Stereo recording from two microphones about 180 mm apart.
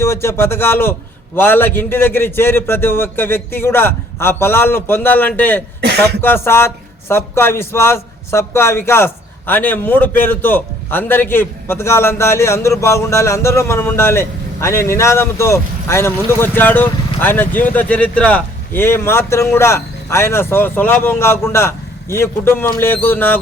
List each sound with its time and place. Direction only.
0.0 s speech: 15° left (ahead or behind)
5.8 s speech: 65° right (ahead or behind)
6.2 s speech: 15° left (ahead or behind)